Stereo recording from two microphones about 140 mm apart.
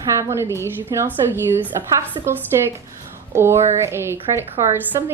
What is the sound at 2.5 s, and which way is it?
A woman's voice, 20° right (ahead or behind).